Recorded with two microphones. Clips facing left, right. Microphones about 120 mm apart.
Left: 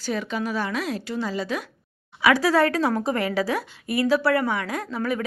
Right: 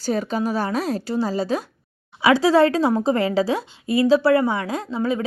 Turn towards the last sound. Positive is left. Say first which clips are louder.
# right 3 dB
turn(degrees=-25)  # may be behind; listen again after turning